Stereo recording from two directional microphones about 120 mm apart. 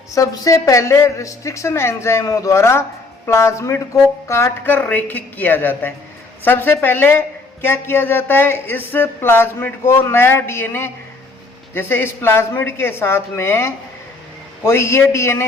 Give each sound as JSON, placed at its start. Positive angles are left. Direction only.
{"t": 0.1, "sound": "a woman's voice", "side_deg": 30}